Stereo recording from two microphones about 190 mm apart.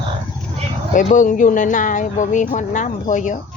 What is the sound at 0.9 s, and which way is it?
Speech, 40° left (ahead or behind).